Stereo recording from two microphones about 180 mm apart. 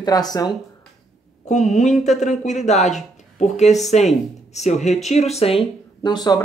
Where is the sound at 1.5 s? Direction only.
45° left (ahead or behind).